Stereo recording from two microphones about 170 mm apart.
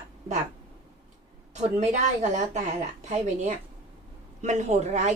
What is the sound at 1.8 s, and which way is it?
Speech, 45° right (ahead or behind).